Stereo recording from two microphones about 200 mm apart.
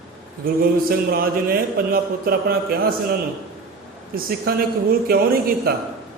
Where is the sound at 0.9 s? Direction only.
50° right (ahead or behind).